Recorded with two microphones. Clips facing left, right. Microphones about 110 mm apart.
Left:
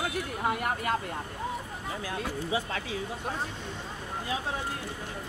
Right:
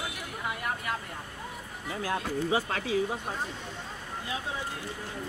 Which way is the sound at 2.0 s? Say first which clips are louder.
Right 6 dB; 55° right (ahead or behind).